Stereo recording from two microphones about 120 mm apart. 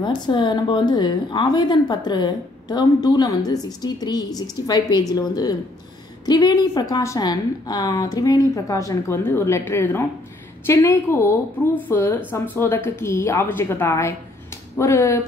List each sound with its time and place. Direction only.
0.0 s a woman's voice: 40° left (ahead or behind); by 15.2 s 25° left (ahead or behind)